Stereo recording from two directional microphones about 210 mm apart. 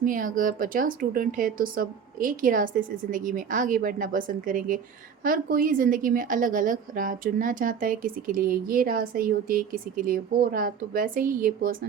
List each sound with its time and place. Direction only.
0.0 s a woman's voice: 40° right (ahead or behind)